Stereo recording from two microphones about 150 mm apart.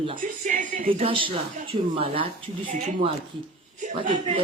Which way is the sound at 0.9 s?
40° right (ahead or behind).